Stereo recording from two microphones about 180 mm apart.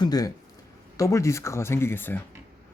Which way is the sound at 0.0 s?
20° left (ahead or behind).